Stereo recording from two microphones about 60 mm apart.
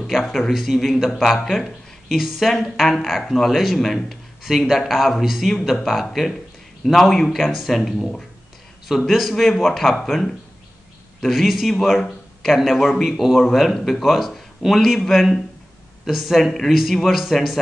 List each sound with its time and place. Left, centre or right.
0.1 s speech: centre